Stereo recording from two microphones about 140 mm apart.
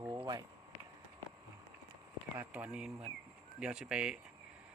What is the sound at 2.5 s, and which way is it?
Speech, 5° right (ahead or behind).